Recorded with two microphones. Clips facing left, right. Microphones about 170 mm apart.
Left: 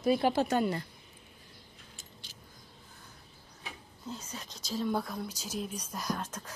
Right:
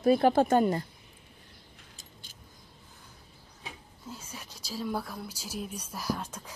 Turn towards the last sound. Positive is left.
turn(degrees=-10)  # may be behind; listen again after turning